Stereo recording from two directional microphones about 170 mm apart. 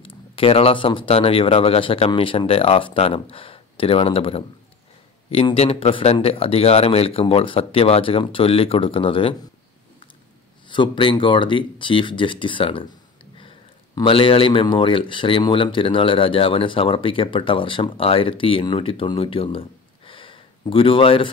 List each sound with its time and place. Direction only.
0.0 s speech: 35° left (ahead or behind)
10.7 s speech: 30° left (ahead or behind)